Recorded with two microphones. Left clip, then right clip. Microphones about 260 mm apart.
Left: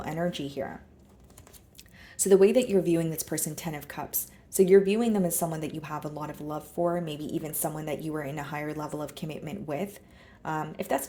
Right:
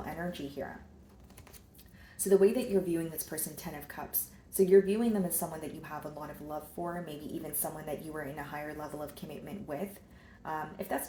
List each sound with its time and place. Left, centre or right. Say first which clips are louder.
0.0 s speech: left 7 dB; left
2.1 s a woman's voice: left 6 dB; left